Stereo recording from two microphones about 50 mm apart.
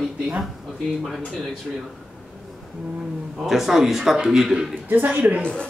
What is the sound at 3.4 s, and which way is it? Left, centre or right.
Speech, centre.